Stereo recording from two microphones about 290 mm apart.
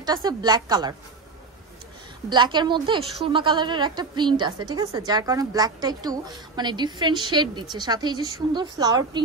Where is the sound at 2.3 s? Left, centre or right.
Centre.